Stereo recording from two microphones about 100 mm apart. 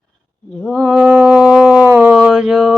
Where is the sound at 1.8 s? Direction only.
20° right (ahead or behind).